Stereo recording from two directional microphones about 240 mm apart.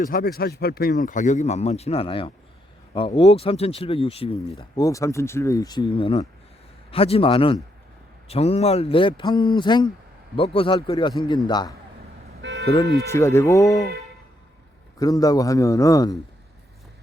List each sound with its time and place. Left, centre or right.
0.0 s a man's voice: left; by 11.7 s centre
12.4 s toot: right
12.8 s speech: right
13.1 s a man's voice: centre
14.9 s a man's voice: centre